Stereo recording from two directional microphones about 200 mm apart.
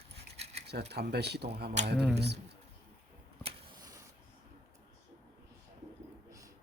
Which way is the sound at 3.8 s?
15° right (ahead or behind).